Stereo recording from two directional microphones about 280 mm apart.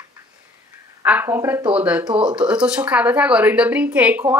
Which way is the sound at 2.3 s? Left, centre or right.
Centre.